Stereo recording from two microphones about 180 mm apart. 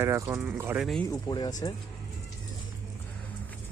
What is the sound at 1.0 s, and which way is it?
Speech, 20° left (ahead or behind).